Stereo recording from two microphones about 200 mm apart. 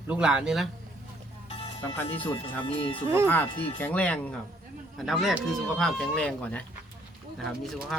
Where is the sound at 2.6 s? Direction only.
25° left (ahead or behind).